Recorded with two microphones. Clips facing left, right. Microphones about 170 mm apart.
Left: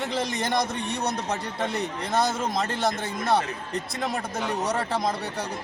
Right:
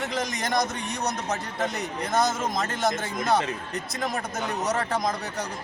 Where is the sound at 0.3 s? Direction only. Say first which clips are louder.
Left 2 dB; 30° left (ahead or behind).